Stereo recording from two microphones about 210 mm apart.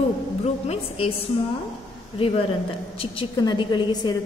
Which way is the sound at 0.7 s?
25° left (ahead or behind).